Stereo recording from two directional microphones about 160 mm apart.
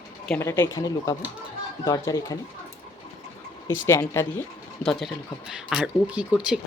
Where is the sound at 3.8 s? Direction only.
15° left (ahead or behind).